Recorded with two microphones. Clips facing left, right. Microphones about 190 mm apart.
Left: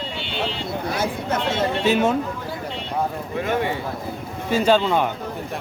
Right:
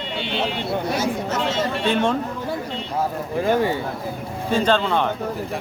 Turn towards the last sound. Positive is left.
turn(degrees=10)  # may be behind; listen again after turning